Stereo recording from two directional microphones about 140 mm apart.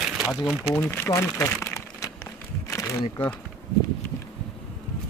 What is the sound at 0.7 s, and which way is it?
Speech, 15° left (ahead or behind).